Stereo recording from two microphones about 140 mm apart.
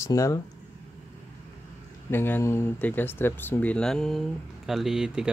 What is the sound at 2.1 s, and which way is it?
Speech, 15° left (ahead or behind).